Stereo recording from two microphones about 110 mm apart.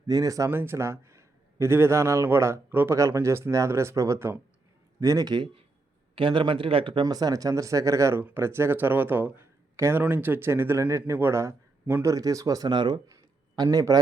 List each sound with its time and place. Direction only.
0.1 s a man's voice: 35° right (ahead or behind); by 7.0 s 55° right (ahead or behind)
7.0 s a man's voice: 35° right (ahead or behind)
13.1 s a sound: 35° right (ahead or behind)